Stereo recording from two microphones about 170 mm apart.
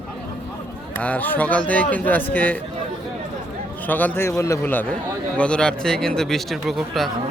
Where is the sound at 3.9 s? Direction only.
10° left (ahead or behind).